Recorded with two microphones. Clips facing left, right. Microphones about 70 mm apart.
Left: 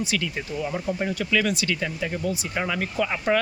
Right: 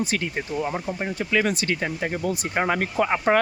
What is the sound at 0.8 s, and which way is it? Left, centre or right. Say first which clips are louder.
Speech: left 2 dB; centre.